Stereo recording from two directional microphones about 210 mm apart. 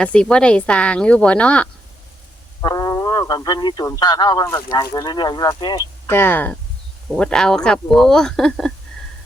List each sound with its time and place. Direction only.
0.0 s speech: 5° left (ahead or behind)
2.6 s speech: 15° left (ahead or behind)
6.1 s speech: 10° left (ahead or behind)